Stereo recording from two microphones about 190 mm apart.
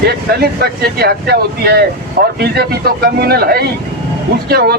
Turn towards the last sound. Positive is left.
turn(degrees=-55)  # may be behind; listen again after turning